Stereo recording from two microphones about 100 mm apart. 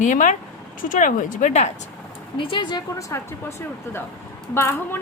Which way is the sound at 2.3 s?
55° left (ahead or behind).